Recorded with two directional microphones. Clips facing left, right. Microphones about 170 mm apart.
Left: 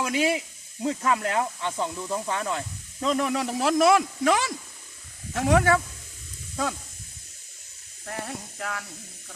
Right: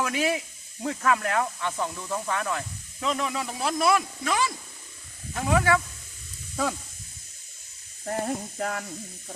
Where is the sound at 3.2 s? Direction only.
65° left (ahead or behind).